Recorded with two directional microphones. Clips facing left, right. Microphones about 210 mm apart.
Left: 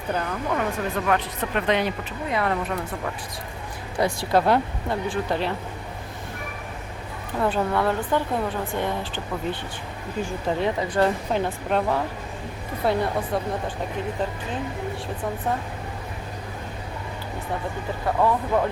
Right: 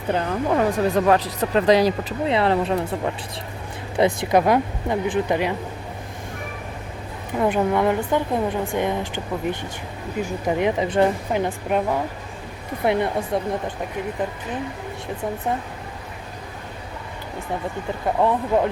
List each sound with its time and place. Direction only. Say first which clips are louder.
0.1 s speech: right 5 dB; 35° right (ahead or behind); by 5.5 s 15° right (ahead or behind)
7.3 s speech: right 3 dB; 15° right (ahead or behind)
18.0 s speech: right 2 dB; 20° right (ahead or behind)